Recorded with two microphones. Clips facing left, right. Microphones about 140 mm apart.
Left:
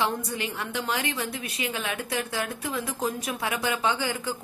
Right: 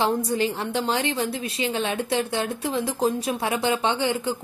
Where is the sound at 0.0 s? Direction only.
30° right (ahead or behind).